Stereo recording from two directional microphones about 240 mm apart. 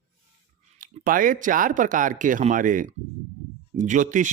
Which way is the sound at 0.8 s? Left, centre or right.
Right.